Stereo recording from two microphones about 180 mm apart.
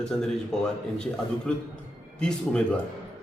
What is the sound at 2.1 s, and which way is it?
Speech, 5° left (ahead or behind).